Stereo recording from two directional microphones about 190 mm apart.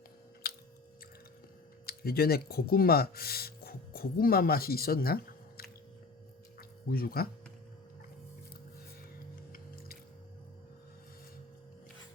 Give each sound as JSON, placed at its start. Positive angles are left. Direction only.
{"t": 0.4, "sound": "chewing", "side_deg": 55}
{"t": 1.9, "sound": "speech", "side_deg": 55}
{"t": 6.6, "sound": "a sound", "side_deg": 50}